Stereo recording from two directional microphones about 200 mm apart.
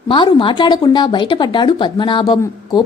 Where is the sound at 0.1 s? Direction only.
25° left (ahead or behind).